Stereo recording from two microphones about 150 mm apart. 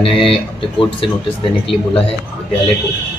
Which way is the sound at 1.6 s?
40° left (ahead or behind).